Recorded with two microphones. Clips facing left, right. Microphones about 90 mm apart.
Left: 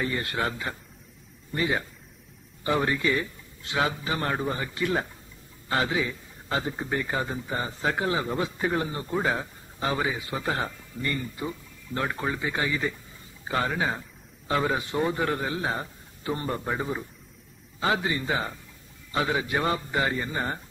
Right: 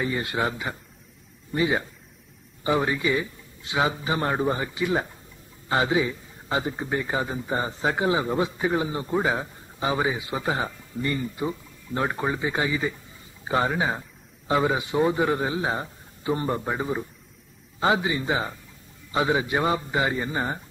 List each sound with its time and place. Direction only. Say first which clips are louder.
0.0 s a man's voice: right 2 dB; 15° right (ahead or behind)